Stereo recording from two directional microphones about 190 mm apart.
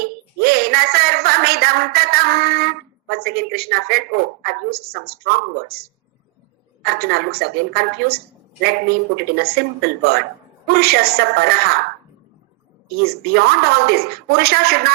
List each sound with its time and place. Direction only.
0.4 s a woman's voice: 55° right (ahead or behind)
6.8 s a woman's voice: 55° right (ahead or behind)
13.0 s a woman's voice: 55° right (ahead or behind)